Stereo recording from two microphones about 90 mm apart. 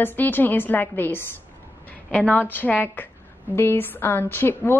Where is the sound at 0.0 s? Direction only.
20° left (ahead or behind).